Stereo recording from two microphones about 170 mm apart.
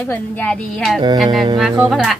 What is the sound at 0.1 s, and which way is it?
Speech, 5° left (ahead or behind).